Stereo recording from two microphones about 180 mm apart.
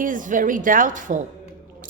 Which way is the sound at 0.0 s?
45° right (ahead or behind).